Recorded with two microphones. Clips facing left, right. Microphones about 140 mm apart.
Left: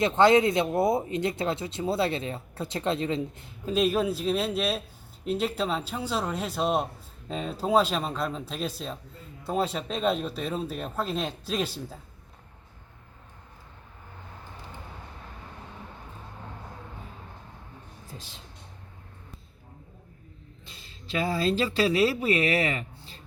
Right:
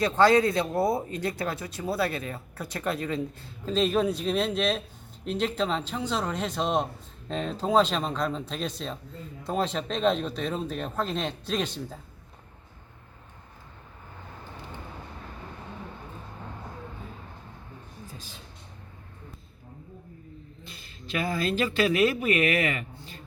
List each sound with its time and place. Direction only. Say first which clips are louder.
0.0 s speech: left 1 dB; 20° left (ahead or behind); by 11.9 s 5° left (ahead or behind)
20.7 s speech: even; 25° left (ahead or behind)